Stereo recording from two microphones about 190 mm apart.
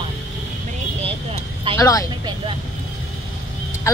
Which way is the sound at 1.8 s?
20° left (ahead or behind).